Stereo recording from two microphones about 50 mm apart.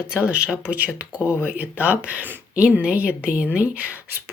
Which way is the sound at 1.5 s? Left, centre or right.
Right.